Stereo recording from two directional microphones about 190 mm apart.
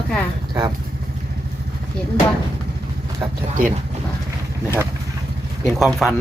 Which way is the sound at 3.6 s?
45° right (ahead or behind).